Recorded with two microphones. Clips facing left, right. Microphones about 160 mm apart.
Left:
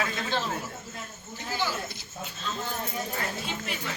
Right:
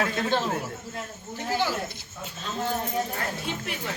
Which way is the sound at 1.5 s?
70° right (ahead or behind).